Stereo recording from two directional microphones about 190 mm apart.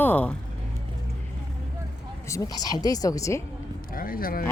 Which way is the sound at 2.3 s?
20° left (ahead or behind).